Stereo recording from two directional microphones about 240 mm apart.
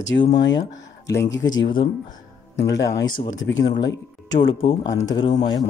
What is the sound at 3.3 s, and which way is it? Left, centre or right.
Speech, left.